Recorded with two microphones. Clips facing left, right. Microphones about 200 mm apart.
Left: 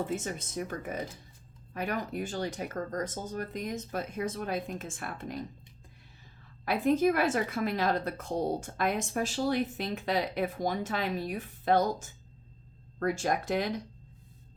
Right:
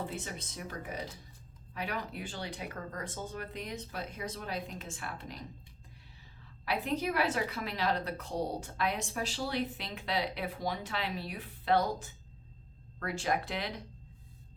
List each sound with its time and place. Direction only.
0.0 s a woman's voice: 45° left (ahead or behind)
6.7 s a woman's voice: 50° left (ahead or behind)